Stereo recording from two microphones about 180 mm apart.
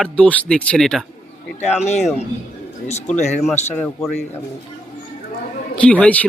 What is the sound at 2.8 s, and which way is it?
Speech, 40° left (ahead or behind).